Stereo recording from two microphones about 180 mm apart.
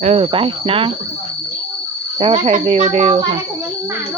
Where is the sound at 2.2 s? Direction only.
30° right (ahead or behind).